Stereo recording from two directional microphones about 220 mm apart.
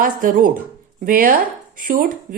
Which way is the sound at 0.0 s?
40° right (ahead or behind).